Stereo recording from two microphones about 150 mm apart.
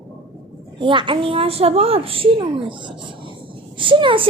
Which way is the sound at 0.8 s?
30° right (ahead or behind).